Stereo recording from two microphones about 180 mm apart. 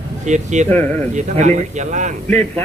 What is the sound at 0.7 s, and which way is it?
Speech, 10° left (ahead or behind).